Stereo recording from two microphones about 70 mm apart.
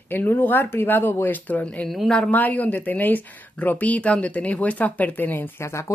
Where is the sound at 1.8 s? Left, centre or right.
Centre.